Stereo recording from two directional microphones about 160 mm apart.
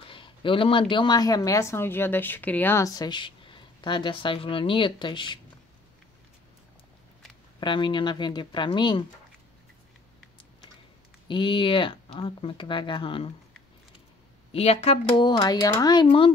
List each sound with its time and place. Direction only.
0.1 s speech: 30° left (ahead or behind)
7.6 s speech: 30° left (ahead or behind)
11.2 s speech: 30° left (ahead or behind)
14.5 s speech: 40° left (ahead or behind)